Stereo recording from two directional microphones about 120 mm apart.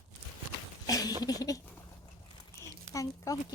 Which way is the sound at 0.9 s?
30° left (ahead or behind).